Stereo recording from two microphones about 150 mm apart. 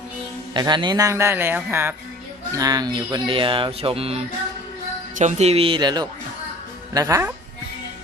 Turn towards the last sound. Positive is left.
turn(degrees=-20)  # may be behind; listen again after turning